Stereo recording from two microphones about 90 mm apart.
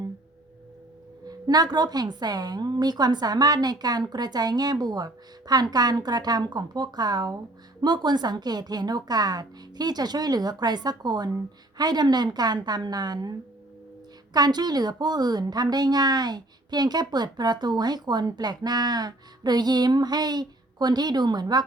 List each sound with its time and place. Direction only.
1.5 s a woman's voice: 50° right (ahead or behind)
14.3 s a woman's voice: 50° right (ahead or behind)